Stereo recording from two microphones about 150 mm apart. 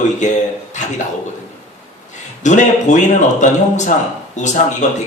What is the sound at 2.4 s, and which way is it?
A man's voice, 55° left (ahead or behind).